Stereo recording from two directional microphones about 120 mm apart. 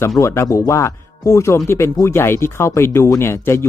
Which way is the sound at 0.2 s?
25° left (ahead or behind).